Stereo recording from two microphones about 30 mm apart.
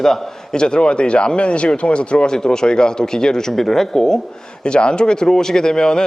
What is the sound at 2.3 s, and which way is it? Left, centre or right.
Speech, left.